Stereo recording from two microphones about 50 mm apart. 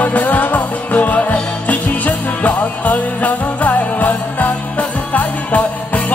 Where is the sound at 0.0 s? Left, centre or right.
Left.